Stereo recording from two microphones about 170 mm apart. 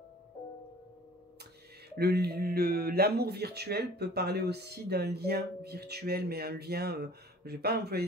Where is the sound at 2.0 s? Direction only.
70° right (ahead or behind).